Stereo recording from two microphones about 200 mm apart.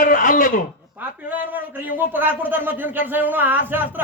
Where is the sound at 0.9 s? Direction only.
10° right (ahead or behind).